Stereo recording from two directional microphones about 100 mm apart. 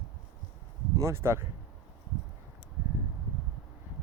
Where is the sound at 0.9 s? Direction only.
25° right (ahead or behind).